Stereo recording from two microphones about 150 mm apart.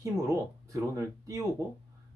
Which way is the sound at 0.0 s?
20° right (ahead or behind).